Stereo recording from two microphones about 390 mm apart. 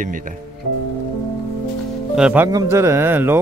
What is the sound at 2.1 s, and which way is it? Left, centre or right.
Speech, centre.